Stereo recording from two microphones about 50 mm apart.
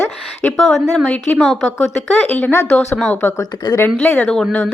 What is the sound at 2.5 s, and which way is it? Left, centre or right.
Speech, left.